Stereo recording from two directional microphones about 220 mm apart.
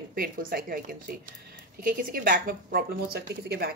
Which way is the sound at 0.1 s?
40° right (ahead or behind).